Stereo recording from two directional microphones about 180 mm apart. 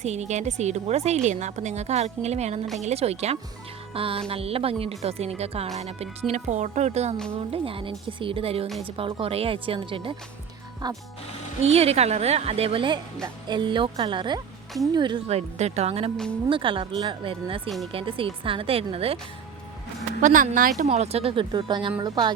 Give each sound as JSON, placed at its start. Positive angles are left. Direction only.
{"t": 0.0, "sound": "speech", "side_deg": -40}
{"t": 11.7, "sound": "speech", "side_deg": -35}
{"t": 20.2, "sound": "speech", "side_deg": -45}